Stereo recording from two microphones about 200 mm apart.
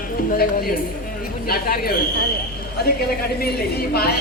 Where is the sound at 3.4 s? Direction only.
50° left (ahead or behind).